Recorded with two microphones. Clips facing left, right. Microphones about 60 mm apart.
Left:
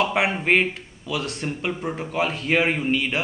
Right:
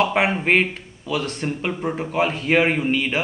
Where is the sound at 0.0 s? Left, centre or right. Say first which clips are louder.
Right 2 dB; centre.